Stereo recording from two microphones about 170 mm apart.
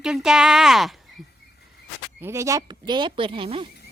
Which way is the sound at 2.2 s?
15° right (ahead or behind).